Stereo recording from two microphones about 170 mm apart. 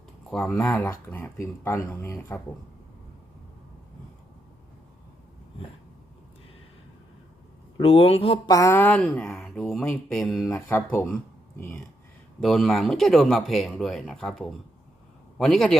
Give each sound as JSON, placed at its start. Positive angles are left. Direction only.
{"t": 0.3, "sound": "speech", "side_deg": 5}
{"t": 7.8, "sound": "speech", "side_deg": 35}
{"t": 8.4, "sound": "speech", "side_deg": 20}
{"t": 9.0, "sound": "speech", "side_deg": 0}
{"t": 12.4, "sound": "speech", "side_deg": 0}